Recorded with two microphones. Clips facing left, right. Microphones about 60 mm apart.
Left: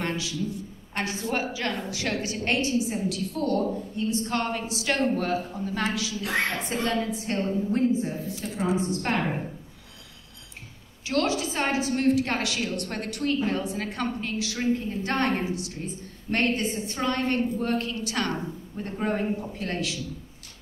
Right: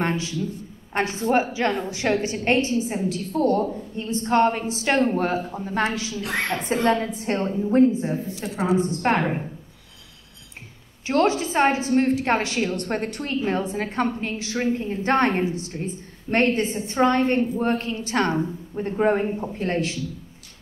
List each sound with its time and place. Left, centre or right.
0.0 s a sound: right
0.9 s a woman's voice: right
8.4 s a woman's voice: right
9.0 s a woman's voice: right
11.1 s a woman's voice: right